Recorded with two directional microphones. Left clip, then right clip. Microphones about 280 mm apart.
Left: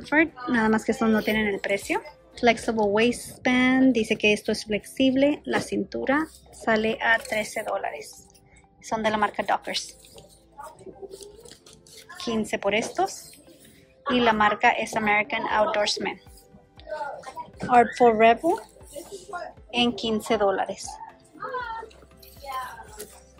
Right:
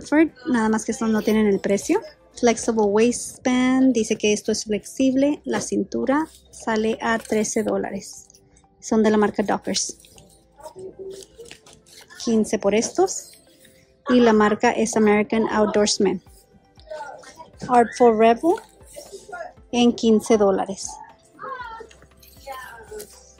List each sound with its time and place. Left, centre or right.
0.0 s a woman's voice: centre
11.9 s a woman's voice: centre
17.6 s speech: centre
19.7 s a woman's voice: centre